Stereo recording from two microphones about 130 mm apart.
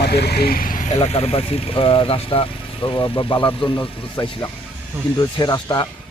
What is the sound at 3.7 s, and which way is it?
Speech, 30° left (ahead or behind).